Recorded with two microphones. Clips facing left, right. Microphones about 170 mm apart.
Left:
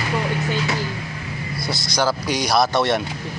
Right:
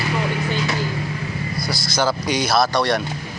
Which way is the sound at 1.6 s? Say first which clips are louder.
Even; 20° left (ahead or behind).